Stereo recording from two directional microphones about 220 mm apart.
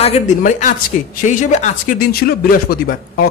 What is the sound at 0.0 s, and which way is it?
A man's voice, 30° left (ahead or behind).